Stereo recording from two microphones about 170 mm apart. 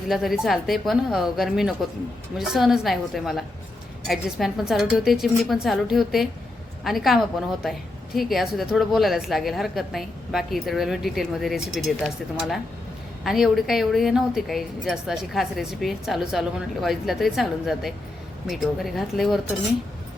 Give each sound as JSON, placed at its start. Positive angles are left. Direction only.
{"t": 0.1, "sound": "a woman's voice", "side_deg": 0}